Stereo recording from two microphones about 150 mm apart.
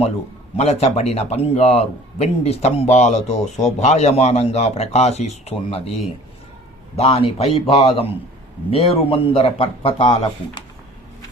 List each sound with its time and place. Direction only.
0.5 s a man's voice: 45° left (ahead or behind)
6.9 s a man's voice: 40° left (ahead or behind)